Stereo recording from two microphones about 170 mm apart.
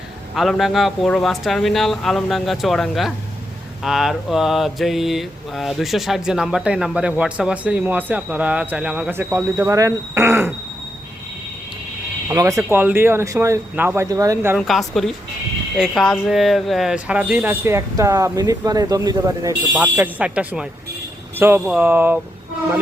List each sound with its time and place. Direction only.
0.3 s mantra: centre (ahead or behind)
12.3 s speech: 20° right (ahead or behind)
14.7 s mantra: centre (ahead or behind)
16.2 s speech: centre (ahead or behind); by 19.5 s 20° right (ahead or behind)
19.7 s speech: 10° right (ahead or behind)